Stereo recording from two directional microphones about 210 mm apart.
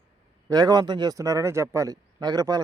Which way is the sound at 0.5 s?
20° right (ahead or behind).